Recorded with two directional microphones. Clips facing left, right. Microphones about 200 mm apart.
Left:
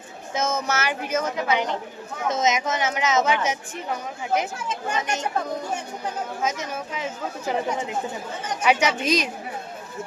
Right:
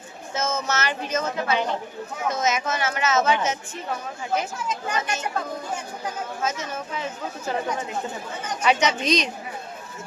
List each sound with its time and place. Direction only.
0.3 s speech: 15° left (ahead or behind)
6.4 s speech: 15° left (ahead or behind)